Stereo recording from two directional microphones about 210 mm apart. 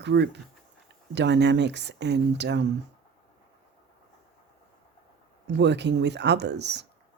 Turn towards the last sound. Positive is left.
turn(degrees=-55)  # may be behind; listen again after turning